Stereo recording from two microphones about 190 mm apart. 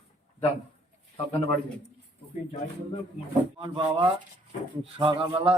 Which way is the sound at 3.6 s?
20° right (ahead or behind).